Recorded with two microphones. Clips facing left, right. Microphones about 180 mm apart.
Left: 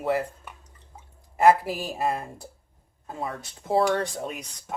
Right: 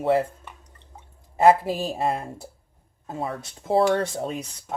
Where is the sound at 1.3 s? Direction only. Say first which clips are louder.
Right 2 dB; 25° right (ahead or behind).